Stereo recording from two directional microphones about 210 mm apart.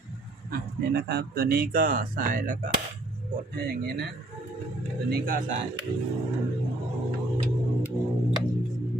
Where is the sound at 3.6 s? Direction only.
50° right (ahead or behind).